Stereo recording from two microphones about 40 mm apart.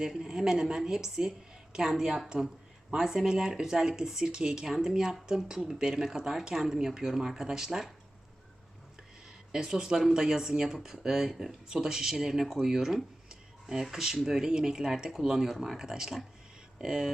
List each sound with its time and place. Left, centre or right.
0.0 s speech: centre
4.7 s speech: centre
9.5 s speech: centre
15.8 s speech: centre